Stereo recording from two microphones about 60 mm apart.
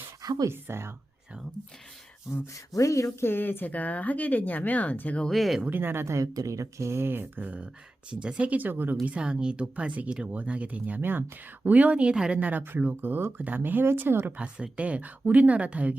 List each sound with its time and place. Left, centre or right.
0.5 s speech: right
2.3 s speech: left
5.3 s speech: centre
5.6 s speech: right
6.1 s speech: right
8.1 s speech: centre; by 9.0 s right
9.0 s speech: centre
12.4 s speech: right
14.3 s speech: centre